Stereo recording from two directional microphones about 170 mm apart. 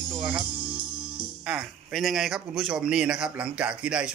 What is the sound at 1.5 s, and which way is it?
Speech, 5° right (ahead or behind).